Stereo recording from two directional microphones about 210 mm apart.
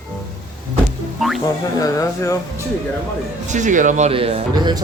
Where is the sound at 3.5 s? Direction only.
35° right (ahead or behind).